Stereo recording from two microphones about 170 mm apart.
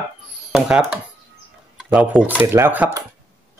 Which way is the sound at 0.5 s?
5° right (ahead or behind).